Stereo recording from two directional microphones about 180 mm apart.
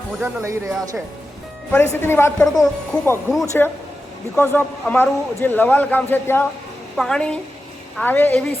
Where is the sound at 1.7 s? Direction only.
15° left (ahead or behind).